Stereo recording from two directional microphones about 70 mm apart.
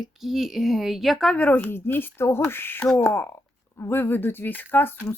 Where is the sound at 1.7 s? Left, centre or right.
Left.